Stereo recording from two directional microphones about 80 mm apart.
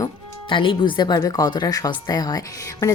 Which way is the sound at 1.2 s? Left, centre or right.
Left.